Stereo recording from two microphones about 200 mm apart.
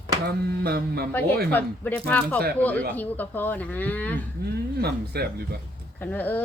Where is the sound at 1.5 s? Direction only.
10° left (ahead or behind).